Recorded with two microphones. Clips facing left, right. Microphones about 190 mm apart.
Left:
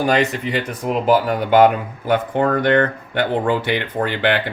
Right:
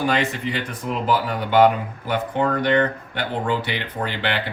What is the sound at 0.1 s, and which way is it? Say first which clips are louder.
Speech: left 5 dB; 45° left (ahead or behind).